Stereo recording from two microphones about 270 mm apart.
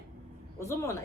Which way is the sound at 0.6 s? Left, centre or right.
Centre.